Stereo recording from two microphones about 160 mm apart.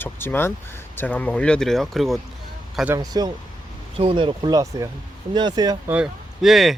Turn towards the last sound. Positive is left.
turn(degrees=0)  # may be behind; listen again after turning